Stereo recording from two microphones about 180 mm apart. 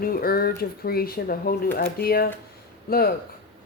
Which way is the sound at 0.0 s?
55° left (ahead or behind).